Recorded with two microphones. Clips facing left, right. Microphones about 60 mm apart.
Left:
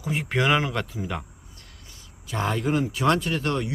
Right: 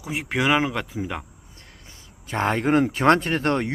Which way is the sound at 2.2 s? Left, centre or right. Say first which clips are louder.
Right 4 dB; right.